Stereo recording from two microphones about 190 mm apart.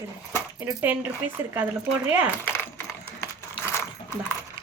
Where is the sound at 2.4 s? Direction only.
10° left (ahead or behind).